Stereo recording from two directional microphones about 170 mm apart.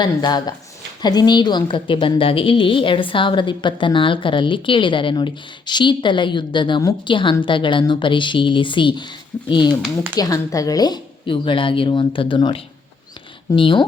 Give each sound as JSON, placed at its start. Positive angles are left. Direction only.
{"t": 0.0, "sound": "a woman's voice", "side_deg": 25}